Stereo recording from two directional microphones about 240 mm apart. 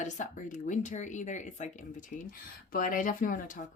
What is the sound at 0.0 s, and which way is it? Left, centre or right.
Speech, left.